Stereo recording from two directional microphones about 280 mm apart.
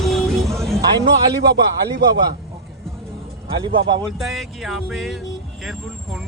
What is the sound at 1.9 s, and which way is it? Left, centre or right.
Speech, right.